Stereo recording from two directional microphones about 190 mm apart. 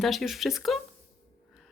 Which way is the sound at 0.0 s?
Centre (ahead or behind).